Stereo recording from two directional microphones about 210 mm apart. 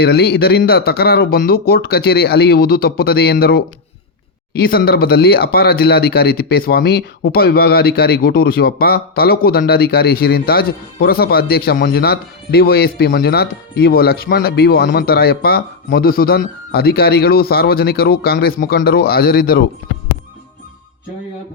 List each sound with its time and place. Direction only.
0.0 s speech: 50° left (ahead or behind)